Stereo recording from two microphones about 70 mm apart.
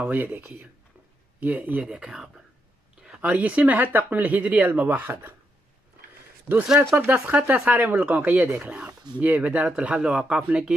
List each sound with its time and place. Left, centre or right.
0.1 s speech: right; by 2.4 s centre
3.2 s speech: right
6.8 s speech: right
7.1 s speech: right